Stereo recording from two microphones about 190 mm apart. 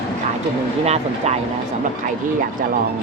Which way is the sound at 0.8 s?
35° right (ahead or behind).